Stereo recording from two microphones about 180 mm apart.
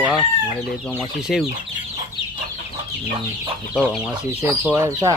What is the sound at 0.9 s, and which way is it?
Speech, centre (ahead or behind).